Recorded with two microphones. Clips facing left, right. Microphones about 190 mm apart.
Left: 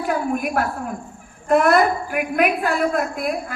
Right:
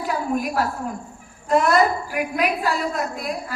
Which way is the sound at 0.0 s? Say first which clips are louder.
Left 2 dB; 55° left (ahead or behind).